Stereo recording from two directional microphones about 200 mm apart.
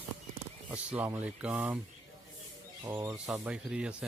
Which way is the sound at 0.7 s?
10° right (ahead or behind).